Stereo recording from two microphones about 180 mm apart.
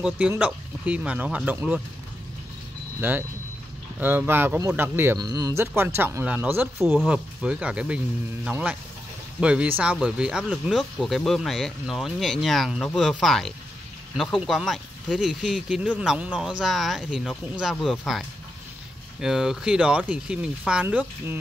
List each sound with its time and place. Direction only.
0.0 s speech: 5° right (ahead or behind)
3.0 s speech: 10° right (ahead or behind)